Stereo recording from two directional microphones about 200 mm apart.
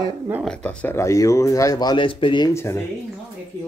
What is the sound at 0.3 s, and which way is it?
Speech, centre (ahead or behind).